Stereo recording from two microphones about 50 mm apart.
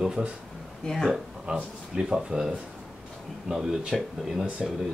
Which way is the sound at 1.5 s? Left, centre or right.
Centre.